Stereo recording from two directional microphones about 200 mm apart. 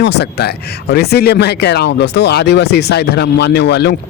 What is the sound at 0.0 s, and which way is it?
Speech, 55° left (ahead or behind).